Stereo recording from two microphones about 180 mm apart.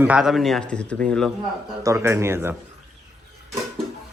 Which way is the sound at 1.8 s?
15° right (ahead or behind).